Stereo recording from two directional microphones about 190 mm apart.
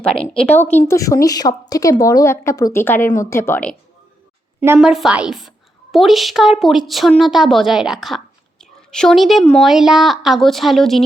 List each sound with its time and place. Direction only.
0.0 s a woman's voice: 5° left (ahead or behind)
4.6 s a woman's voice: 10° right (ahead or behind)